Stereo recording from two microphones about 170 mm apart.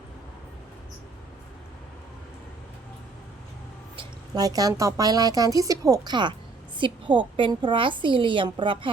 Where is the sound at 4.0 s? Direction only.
20° right (ahead or behind).